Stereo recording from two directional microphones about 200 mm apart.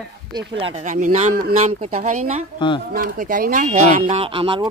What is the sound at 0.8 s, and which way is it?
Speech, 40° right (ahead or behind).